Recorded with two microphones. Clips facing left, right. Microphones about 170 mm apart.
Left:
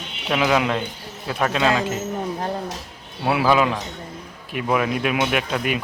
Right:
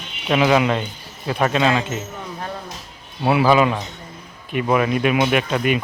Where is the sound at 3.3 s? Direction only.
Centre (ahead or behind).